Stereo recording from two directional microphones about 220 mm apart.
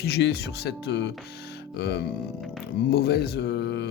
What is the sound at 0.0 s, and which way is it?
Speech, 45° left (ahead or behind).